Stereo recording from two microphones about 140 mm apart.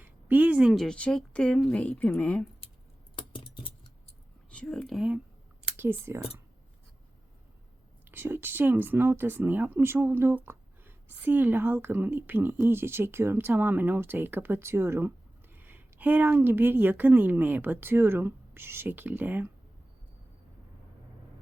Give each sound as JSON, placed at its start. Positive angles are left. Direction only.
{"t": 0.0, "sound": "speech", "side_deg": -10}
{"t": 3.2, "sound": "a sound", "side_deg": 35}
{"t": 4.5, "sound": "speech", "side_deg": 5}
{"t": 5.7, "sound": "speech", "side_deg": -15}
{"t": 8.0, "sound": "speech", "side_deg": -15}